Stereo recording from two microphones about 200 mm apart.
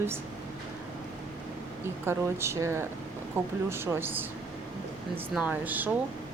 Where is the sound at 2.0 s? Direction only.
15° right (ahead or behind).